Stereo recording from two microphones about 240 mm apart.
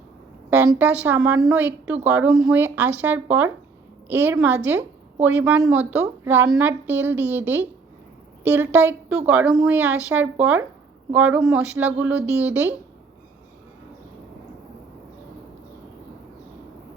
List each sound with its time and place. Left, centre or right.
0.5 s a woman's voice: centre